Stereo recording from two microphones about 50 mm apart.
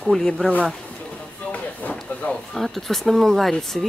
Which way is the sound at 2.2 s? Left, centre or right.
Left.